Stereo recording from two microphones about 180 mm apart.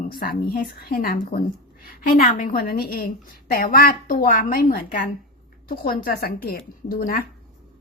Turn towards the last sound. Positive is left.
turn(degrees=55)  # may be behind; listen again after turning